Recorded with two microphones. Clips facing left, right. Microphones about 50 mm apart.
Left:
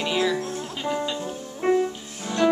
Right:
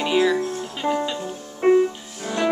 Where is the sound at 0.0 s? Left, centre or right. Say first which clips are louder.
Right 4 dB; centre.